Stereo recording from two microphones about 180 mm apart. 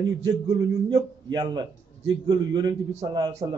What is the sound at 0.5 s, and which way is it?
A man's voice, 20° right (ahead or behind).